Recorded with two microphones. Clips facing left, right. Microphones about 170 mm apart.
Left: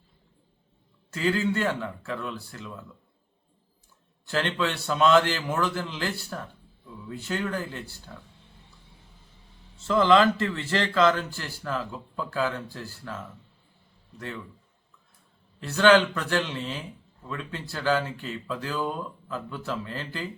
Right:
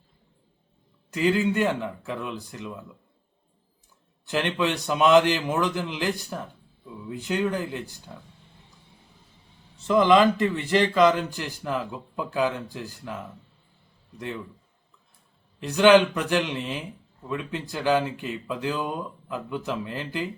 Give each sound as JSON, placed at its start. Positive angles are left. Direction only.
{"t": 1.1, "sound": "a man's voice", "side_deg": -15}
{"t": 4.3, "sound": "a man's voice", "side_deg": -15}
{"t": 9.7, "sound": "a man's voice", "side_deg": -15}
{"t": 15.6, "sound": "a man's voice", "side_deg": -15}